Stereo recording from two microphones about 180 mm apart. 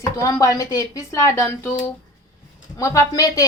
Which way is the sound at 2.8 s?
20° left (ahead or behind).